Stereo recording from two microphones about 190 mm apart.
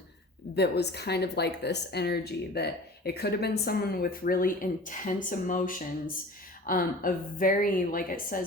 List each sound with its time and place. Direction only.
0.5 s a woman's voice: 60° left (ahead or behind)